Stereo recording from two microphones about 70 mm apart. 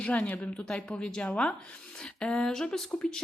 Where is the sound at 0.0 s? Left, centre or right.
Centre.